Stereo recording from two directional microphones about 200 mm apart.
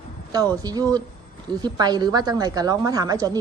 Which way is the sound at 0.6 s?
20° right (ahead or behind).